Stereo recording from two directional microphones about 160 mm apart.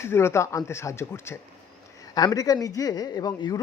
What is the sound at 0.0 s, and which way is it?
Speech, 15° left (ahead or behind).